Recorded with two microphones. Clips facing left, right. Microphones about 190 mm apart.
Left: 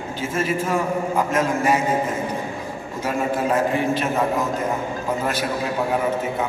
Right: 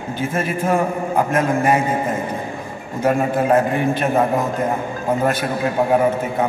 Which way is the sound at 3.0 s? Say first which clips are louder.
Right 5 dB; 55° right (ahead or behind).